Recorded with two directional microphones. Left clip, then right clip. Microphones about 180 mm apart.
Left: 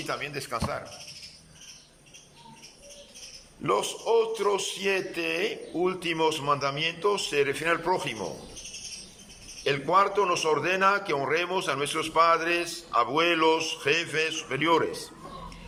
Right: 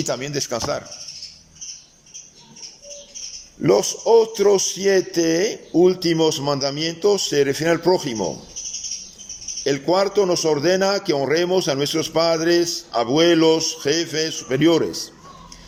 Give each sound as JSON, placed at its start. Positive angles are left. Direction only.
{"t": 0.0, "sound": "a man's voice", "side_deg": -35}
{"t": 3.6, "sound": "a man's voice", "side_deg": -35}
{"t": 9.6, "sound": "a man's voice", "side_deg": -30}